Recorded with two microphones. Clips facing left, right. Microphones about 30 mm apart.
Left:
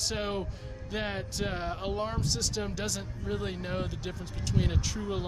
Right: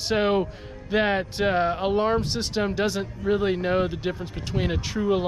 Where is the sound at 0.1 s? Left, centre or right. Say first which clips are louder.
Right 11 dB; right.